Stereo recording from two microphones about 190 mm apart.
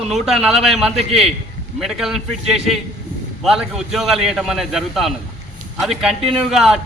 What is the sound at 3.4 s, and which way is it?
A man's voice, centre (ahead or behind).